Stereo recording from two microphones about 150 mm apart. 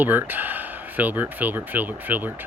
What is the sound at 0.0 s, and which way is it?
Speech, 10° right (ahead or behind).